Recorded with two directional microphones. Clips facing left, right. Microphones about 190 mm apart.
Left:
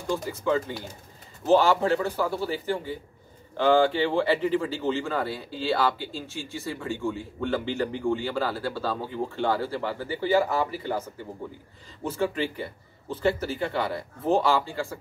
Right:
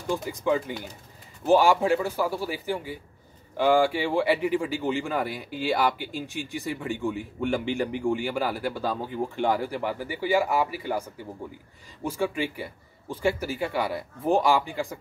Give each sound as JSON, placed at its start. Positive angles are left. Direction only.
{"t": 0.1, "sound": "speech", "side_deg": -15}